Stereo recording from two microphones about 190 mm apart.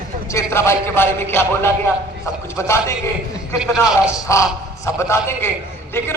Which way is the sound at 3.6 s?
5° right (ahead or behind).